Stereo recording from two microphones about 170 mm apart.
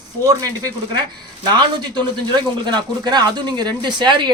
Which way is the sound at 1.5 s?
25° right (ahead or behind).